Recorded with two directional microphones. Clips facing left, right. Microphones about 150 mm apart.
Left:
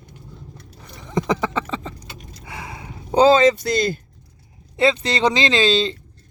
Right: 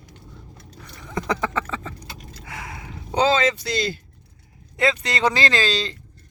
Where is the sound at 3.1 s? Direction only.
35° left (ahead or behind).